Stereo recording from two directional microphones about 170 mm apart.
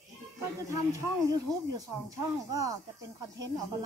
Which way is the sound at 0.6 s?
20° right (ahead or behind).